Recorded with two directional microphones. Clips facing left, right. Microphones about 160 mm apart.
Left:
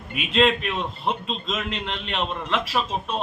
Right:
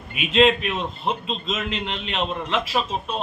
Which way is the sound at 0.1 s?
5° right (ahead or behind).